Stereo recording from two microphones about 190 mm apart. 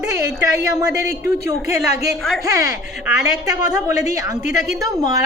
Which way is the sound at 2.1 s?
Centre (ahead or behind).